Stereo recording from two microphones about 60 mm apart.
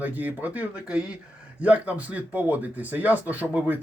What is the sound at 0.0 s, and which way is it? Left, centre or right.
Speech, right.